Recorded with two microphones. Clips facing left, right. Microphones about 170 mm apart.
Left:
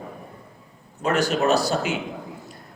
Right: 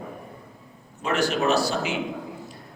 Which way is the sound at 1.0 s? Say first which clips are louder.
Left 2 dB; 40° left (ahead or behind).